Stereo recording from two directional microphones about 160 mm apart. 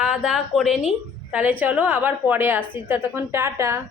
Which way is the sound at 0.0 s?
5° right (ahead or behind).